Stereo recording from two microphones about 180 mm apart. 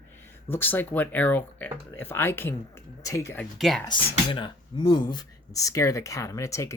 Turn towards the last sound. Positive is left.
turn(degrees=15)  # may be behind; listen again after turning